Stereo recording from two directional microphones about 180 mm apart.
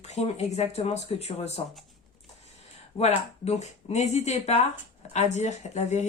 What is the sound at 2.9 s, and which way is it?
A woman's voice, 35° left (ahead or behind).